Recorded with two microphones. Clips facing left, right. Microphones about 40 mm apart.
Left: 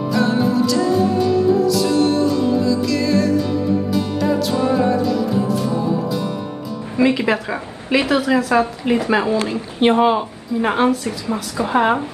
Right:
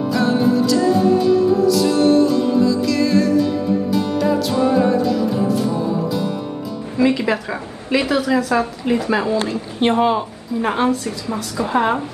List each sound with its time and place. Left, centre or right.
0.1 s music: centre
7.0 s a woman's voice: centre